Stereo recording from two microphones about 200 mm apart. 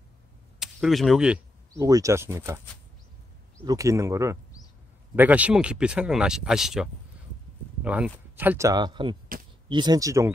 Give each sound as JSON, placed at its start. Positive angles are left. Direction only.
{"t": 0.6, "sound": "arrow", "side_deg": 0}
{"t": 1.8, "sound": "speech", "side_deg": -15}
{"t": 3.6, "sound": "speech", "side_deg": -15}